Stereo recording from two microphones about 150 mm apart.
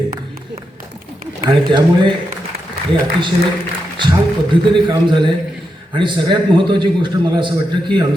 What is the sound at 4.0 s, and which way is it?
A man's voice, 30° right (ahead or behind).